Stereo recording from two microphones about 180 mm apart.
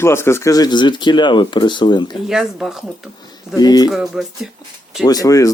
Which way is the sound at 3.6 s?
20° left (ahead or behind).